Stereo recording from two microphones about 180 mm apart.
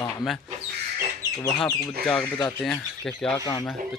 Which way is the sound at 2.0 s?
5° left (ahead or behind).